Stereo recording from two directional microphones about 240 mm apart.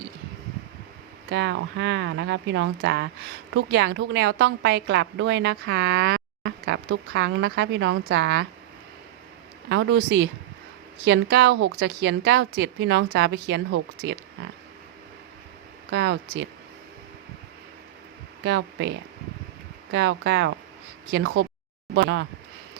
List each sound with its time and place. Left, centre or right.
1.3 s a woman's voice: right
9.6 s a woman's voice: right
15.9 s a woman's voice: right
18.4 s a woman's voice: right